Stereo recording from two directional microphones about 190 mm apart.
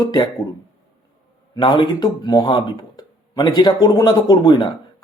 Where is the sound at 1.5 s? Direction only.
25° left (ahead or behind).